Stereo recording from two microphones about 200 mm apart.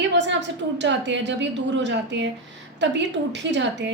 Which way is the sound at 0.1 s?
60° right (ahead or behind).